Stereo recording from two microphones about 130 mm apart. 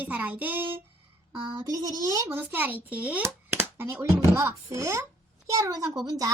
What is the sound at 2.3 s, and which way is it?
A child's voice, 15° right (ahead or behind).